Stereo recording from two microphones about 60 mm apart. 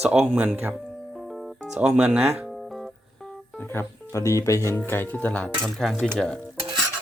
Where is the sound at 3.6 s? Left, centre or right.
Left.